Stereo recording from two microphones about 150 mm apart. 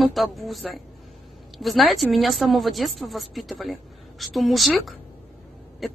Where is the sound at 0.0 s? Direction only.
Centre (ahead or behind).